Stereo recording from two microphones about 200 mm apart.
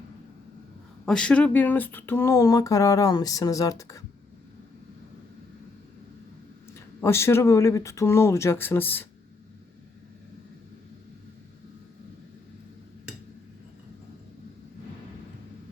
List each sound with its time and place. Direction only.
1.0 s speech: 5° left (ahead or behind)
6.7 s speech: 15° left (ahead or behind)